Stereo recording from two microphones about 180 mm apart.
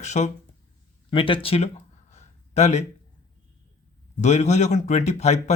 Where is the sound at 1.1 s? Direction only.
30° left (ahead or behind).